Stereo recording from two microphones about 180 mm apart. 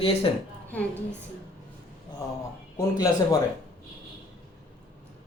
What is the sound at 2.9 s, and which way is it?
Speech, 20° left (ahead or behind).